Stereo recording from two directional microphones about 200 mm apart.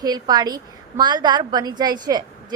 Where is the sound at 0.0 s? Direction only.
20° right (ahead or behind).